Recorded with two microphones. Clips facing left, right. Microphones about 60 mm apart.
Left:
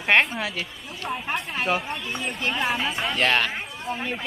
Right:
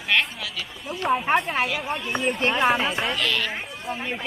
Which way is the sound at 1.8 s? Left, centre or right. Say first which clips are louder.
Right 5 dB; centre.